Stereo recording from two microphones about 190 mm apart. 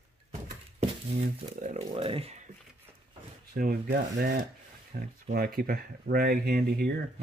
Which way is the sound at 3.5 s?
45° right (ahead or behind).